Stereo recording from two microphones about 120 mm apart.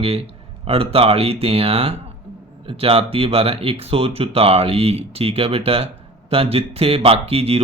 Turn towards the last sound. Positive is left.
turn(degrees=-55)  # may be behind; listen again after turning